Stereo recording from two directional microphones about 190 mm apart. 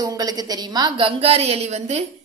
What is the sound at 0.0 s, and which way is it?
A woman's voice, 20° right (ahead or behind).